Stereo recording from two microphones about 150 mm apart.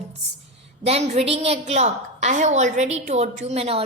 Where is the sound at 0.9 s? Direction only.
45° right (ahead or behind).